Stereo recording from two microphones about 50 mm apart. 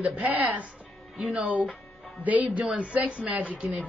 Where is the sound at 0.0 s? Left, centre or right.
Right.